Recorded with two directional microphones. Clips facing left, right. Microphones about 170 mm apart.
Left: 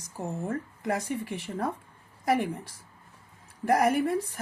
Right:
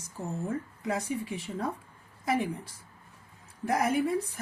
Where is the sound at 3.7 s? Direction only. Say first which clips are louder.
Left 3 dB; 55° left (ahead or behind).